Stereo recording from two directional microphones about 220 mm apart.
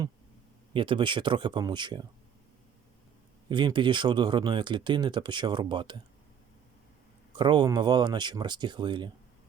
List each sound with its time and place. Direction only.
0.7 s speech: 20° right (ahead or behind)
3.5 s speech: 20° right (ahead or behind)
7.3 s speech: 20° right (ahead or behind)